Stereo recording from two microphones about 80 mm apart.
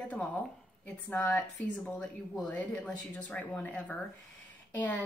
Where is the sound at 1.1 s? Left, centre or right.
Left.